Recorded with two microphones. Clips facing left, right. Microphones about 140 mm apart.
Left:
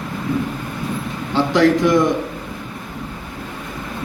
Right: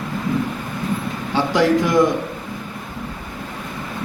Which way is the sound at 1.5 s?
Centre (ahead or behind).